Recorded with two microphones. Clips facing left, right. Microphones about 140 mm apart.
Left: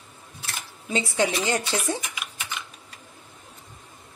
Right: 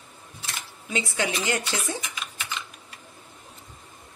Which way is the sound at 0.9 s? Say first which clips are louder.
Left 4 dB; 35° left (ahead or behind).